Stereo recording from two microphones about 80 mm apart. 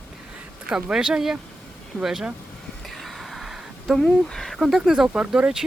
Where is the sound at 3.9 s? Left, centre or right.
Centre.